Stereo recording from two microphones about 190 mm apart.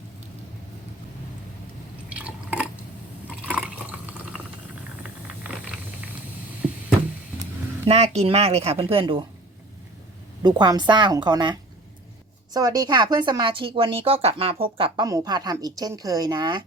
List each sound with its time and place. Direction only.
2.1 s drip: 5° right (ahead or behind)
5.4 s boiling: 5° right (ahead or behind)
7.9 s speech: 35° right (ahead or behind)
10.4 s speech: 20° right (ahead or behind)
12.5 s speech: 20° right (ahead or behind)